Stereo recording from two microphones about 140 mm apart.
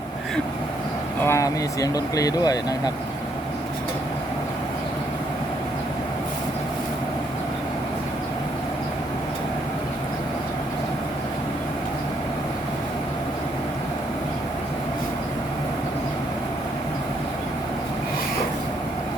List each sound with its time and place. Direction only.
1.2 s speech: 20° left (ahead or behind)